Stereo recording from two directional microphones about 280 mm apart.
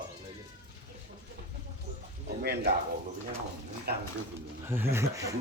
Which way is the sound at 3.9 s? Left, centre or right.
Right.